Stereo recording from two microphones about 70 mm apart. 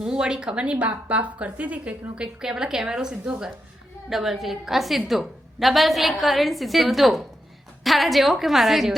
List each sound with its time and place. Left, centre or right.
0.0 s a woman's voice: centre